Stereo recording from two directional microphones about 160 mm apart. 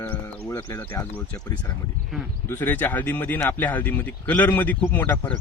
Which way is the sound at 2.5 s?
10° left (ahead or behind).